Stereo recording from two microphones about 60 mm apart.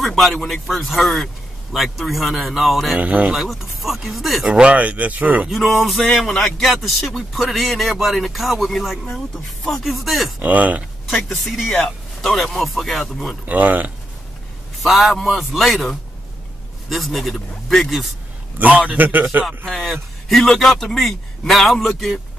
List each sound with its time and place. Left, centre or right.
0.0 s a man's voice: centre
3.0 s speech: right
3.3 s a man's voice: centre
4.5 s speech: centre
5.5 s a man's voice: centre
10.4 s speech: right
11.1 s a man's voice: centre
13.5 s speech: right
14.8 s a man's voice: centre
18.6 s speech: right
19.4 s a man's voice: centre